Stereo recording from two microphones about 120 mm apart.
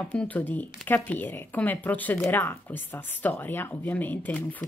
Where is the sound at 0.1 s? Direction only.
15° left (ahead or behind).